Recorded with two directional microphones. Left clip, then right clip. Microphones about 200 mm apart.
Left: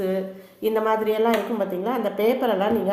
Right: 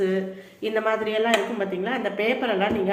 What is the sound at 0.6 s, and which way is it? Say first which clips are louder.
A woman's voice: left 2 dB; 40° left (ahead or behind).